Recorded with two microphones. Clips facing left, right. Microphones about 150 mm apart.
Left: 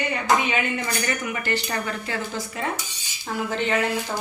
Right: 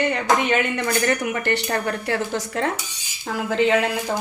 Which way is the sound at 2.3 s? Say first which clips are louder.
Right 5 dB; 80° right.